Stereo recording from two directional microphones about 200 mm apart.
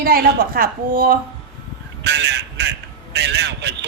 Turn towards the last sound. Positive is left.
turn(degrees=-60)  # may be behind; listen again after turning